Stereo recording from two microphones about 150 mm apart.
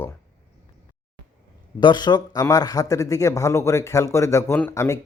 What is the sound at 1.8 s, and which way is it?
Speech, 30° left (ahead or behind).